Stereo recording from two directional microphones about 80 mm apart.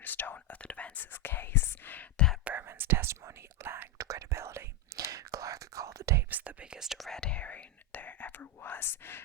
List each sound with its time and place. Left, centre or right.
0.0 s speech: left
1.1 s whispering: left
2.1 s whispering: centre
2.4 s whispering: centre
3.9 s whispering: right
6.3 s whispering: centre
7.1 s whispering: centre; by 9.2 s left